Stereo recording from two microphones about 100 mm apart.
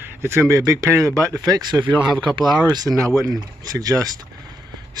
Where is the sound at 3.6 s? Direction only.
40° right (ahead or behind).